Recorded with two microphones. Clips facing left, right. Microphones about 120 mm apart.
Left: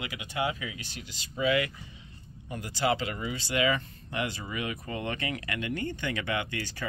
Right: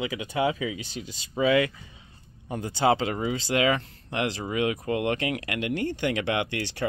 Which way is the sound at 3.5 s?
90° right.